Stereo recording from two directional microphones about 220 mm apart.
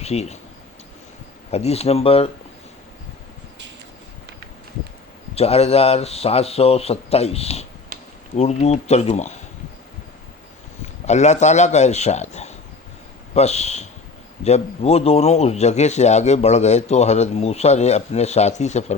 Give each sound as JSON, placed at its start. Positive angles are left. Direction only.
{"t": 0.0, "sound": "speech", "side_deg": 30}
{"t": 1.5, "sound": "speech", "side_deg": 30}
{"t": 5.3, "sound": "speech", "side_deg": 30}
{"t": 11.0, "sound": "a man's voice", "side_deg": 30}